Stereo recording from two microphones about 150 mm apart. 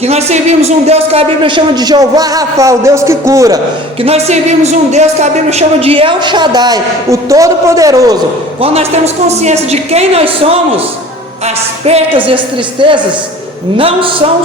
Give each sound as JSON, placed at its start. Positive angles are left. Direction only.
{"t": 0.0, "sound": "a woman's voice", "side_deg": -45}
{"t": 4.0, "sound": "a woman's voice", "side_deg": -45}
{"t": 8.6, "sound": "a woman's voice", "side_deg": -40}
{"t": 12.8, "sound": "a woman's voice", "side_deg": -35}